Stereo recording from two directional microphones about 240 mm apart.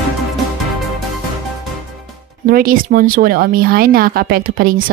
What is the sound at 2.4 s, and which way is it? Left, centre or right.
Speech, right.